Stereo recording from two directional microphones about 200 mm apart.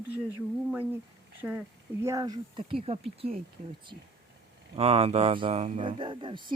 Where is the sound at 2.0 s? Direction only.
20° right (ahead or behind).